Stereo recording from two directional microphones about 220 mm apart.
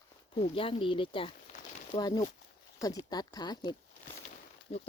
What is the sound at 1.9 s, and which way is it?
Speech, 20° left (ahead or behind).